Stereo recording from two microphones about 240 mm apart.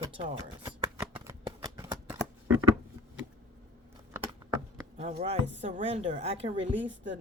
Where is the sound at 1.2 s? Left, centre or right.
Centre.